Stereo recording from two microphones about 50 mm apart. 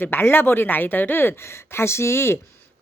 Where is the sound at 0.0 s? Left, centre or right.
Left.